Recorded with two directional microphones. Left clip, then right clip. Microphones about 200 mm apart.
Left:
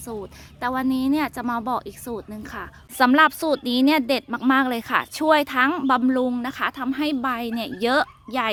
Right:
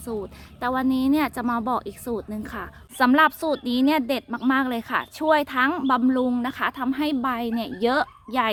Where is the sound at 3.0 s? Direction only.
20° left (ahead or behind).